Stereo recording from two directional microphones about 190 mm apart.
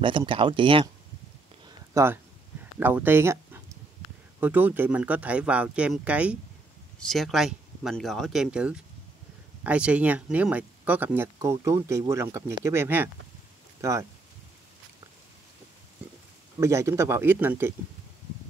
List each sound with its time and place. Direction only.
0.0 s speech: 25° right (ahead or behind)
2.0 s speech: 15° right (ahead or behind)
16.5 s speech: 15° right (ahead or behind)